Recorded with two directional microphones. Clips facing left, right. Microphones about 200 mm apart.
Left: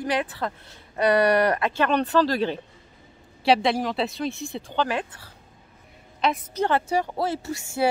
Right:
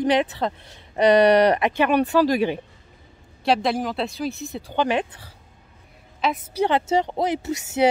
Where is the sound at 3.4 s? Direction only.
Centre (ahead or behind).